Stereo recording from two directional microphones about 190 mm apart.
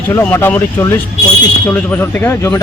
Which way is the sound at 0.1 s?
15° left (ahead or behind).